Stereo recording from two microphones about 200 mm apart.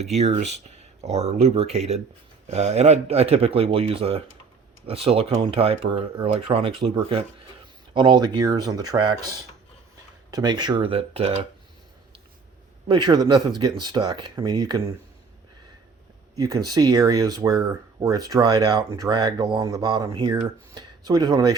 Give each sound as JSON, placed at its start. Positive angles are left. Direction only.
{"t": 0.2, "sound": "speech", "side_deg": -35}
{"t": 12.9, "sound": "speech", "side_deg": -20}
{"t": 16.3, "sound": "speech", "side_deg": -20}